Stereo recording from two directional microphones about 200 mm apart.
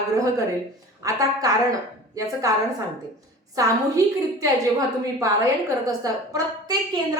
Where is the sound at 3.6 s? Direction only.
15° right (ahead or behind).